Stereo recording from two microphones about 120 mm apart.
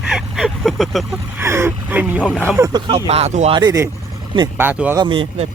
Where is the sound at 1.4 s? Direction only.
20° right (ahead or behind).